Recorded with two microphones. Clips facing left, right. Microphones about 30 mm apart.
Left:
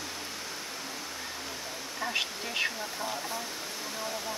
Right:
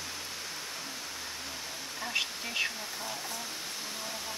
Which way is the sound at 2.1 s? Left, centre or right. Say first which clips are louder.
Right 1 dB; centre.